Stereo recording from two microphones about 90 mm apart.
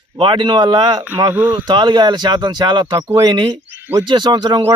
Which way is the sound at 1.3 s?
20° right (ahead or behind).